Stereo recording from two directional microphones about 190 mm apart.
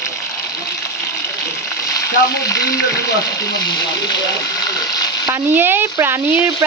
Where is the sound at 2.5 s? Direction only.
20° left (ahead or behind).